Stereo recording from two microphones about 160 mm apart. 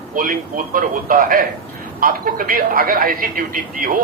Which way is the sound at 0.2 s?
60° right (ahead or behind).